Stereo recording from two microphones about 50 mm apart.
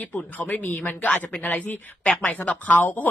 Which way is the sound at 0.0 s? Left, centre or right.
Left.